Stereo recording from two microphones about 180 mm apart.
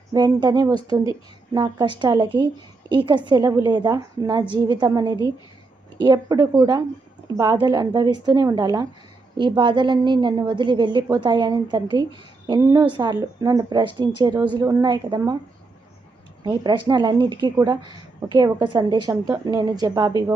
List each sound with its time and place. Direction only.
0.1 s a woman's voice: 20° right (ahead or behind)
16.4 s a woman's voice: 25° right (ahead or behind)